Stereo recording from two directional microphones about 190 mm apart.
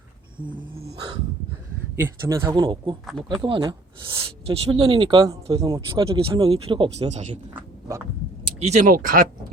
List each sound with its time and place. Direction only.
0.5 s speech: 25° right (ahead or behind)
2.0 s speech: 15° right (ahead or behind)
6.1 s speech: 30° right (ahead or behind)
8.4 s speech: 35° right (ahead or behind)